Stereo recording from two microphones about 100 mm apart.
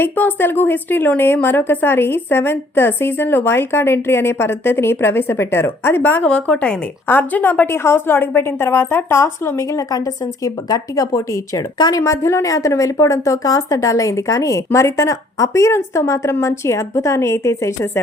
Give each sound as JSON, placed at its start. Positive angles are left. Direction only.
{"t": 0.0, "sound": "a woman's voice", "side_deg": 20}